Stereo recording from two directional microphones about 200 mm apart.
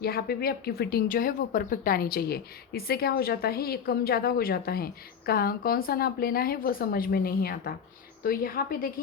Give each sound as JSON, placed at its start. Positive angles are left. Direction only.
{"t": 0.0, "sound": "a woman's voice", "side_deg": 50}